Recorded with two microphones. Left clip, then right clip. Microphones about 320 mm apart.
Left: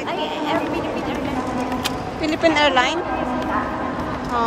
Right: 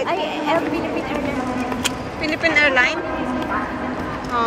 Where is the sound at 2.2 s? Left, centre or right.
Centre.